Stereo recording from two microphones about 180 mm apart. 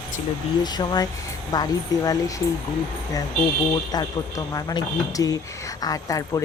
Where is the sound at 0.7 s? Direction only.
25° left (ahead or behind).